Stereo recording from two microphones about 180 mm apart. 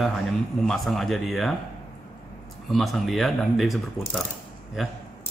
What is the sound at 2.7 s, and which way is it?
Speech, centre (ahead or behind).